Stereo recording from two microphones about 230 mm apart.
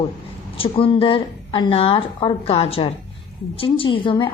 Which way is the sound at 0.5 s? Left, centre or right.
Left.